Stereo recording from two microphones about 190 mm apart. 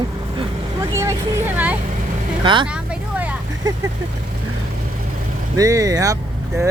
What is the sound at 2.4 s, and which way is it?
Speech, 25° right (ahead or behind).